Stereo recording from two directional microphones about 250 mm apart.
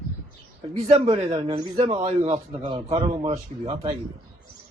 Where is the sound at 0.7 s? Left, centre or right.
Right.